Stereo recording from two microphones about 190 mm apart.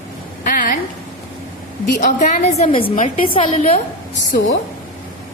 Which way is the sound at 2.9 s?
45° left (ahead or behind).